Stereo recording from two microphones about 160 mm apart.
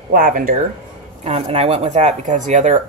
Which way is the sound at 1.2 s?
40° right (ahead or behind).